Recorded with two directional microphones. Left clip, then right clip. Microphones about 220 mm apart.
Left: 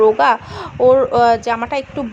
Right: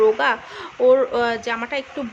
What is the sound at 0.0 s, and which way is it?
Speech, 20° left (ahead or behind).